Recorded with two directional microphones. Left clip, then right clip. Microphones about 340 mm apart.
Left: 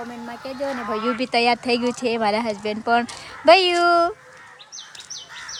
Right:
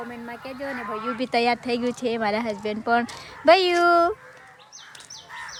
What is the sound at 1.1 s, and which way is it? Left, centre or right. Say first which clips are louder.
Speech: left 2 dB; centre.